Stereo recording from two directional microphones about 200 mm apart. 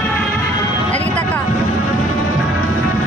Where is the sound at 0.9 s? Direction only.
5° left (ahead or behind).